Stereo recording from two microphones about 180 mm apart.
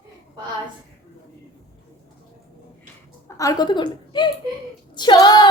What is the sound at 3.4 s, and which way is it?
A woman's voice, 20° left (ahead or behind).